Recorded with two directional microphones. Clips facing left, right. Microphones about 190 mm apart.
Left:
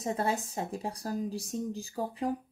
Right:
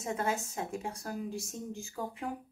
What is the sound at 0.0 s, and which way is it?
Speech, 35° left (ahead or behind).